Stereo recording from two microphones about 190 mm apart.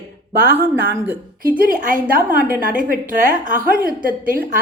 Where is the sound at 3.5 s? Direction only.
45° right (ahead or behind).